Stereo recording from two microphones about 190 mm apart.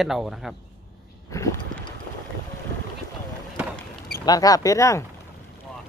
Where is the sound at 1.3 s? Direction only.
15° left (ahead or behind).